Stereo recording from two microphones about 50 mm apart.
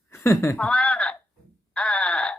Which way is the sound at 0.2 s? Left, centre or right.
Left.